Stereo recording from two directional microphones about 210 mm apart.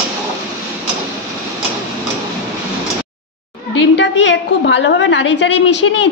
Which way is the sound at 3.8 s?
55° left (ahead or behind).